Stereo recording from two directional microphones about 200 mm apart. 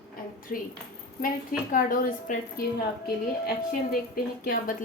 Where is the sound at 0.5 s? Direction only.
45° left (ahead or behind).